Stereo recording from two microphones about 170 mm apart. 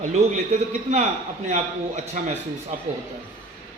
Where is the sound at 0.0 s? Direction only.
45° right (ahead or behind).